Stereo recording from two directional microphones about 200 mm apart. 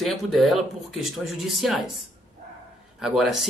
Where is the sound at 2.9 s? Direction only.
Centre (ahead or behind).